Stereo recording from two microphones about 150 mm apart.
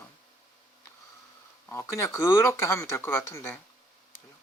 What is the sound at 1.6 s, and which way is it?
Speech, 20° left (ahead or behind).